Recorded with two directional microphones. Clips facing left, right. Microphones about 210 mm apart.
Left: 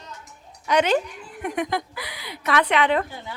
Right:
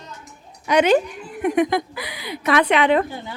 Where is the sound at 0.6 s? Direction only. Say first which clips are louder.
Right 4 dB; 10° right (ahead or behind).